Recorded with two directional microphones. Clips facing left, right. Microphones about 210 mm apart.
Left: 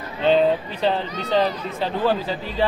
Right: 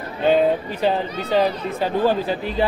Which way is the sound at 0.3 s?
10° right (ahead or behind).